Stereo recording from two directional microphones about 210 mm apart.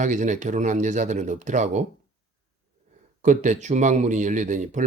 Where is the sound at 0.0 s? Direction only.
35° right (ahead or behind).